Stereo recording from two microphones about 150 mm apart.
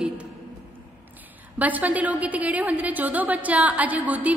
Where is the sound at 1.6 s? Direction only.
10° right (ahead or behind).